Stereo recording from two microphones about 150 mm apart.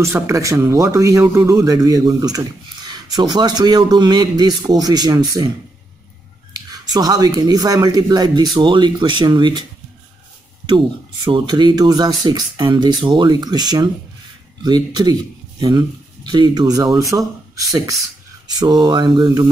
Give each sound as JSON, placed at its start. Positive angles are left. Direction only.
{"t": 0.0, "sound": "speech", "side_deg": -20}
{"t": 6.5, "sound": "speech", "side_deg": -25}
{"t": 11.2, "sound": "speech", "side_deg": -30}
{"t": 16.3, "sound": "speech", "side_deg": -25}